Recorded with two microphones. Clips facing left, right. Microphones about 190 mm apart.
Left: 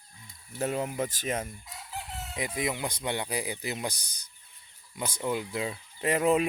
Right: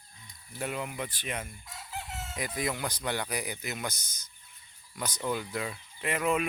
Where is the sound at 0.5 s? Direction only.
40° left (ahead or behind).